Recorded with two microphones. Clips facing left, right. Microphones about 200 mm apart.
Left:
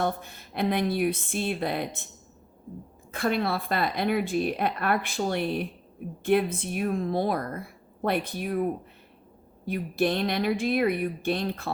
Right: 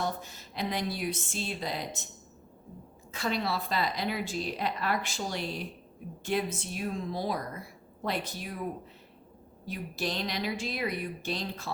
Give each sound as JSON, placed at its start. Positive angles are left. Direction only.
{"t": 0.0, "sound": "speech", "side_deg": 55}
{"t": 3.1, "sound": "speech", "side_deg": 55}